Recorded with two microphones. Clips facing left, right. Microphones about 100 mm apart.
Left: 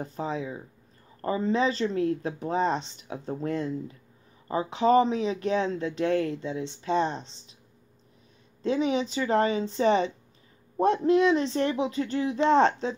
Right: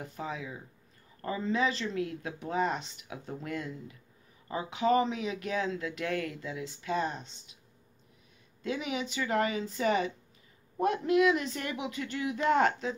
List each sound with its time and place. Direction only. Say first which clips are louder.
0.0 s speech: left 7 dB; 30° left (ahead or behind)
8.6 s speech: left 8 dB; 30° left (ahead or behind)